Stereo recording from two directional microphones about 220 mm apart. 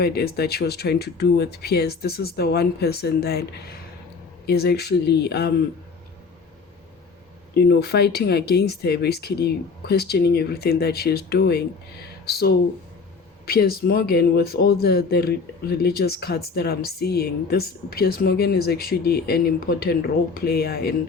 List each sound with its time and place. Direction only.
0.0 s speech: 45° left (ahead or behind)
7.5 s speech: 45° left (ahead or behind)